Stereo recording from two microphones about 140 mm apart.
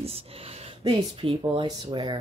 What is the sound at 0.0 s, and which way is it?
Speech, 45° right (ahead or behind).